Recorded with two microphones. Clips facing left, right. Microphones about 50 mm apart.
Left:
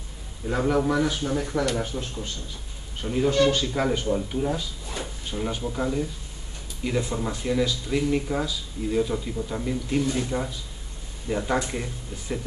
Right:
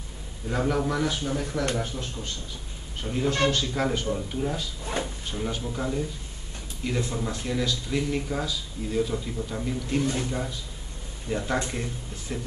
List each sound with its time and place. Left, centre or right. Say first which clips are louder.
0.5 s speech: left 3 dB; centre
4.9 s speech: right 5 dB; right
5.3 s speech: left 3 dB; centre
11.2 s speech: left 2 dB; centre